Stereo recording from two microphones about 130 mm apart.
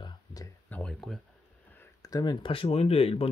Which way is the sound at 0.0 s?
30° left (ahead or behind).